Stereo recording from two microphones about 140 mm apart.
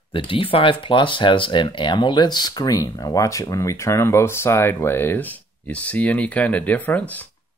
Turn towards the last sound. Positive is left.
turn(degrees=10)  # may be behind; listen again after turning